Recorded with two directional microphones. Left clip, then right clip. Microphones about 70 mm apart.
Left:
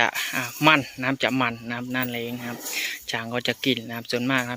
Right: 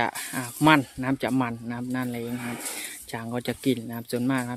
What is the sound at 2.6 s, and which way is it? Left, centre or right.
Speech, right.